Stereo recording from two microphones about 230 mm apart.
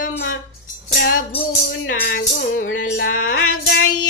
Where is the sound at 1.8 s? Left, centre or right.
Left.